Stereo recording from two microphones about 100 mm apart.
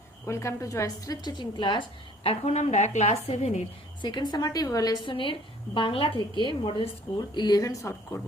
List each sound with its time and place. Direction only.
0.3 s a woman's voice: 30° left (ahead or behind)
1.3 s a woman's voice: 50° left (ahead or behind)
2.2 s a woman's voice: 80° left
4.0 s a woman's voice: 45° left (ahead or behind)
5.0 s a woman's voice: 55° left (ahead or behind)
7.2 s a woman's voice: 45° left (ahead or behind)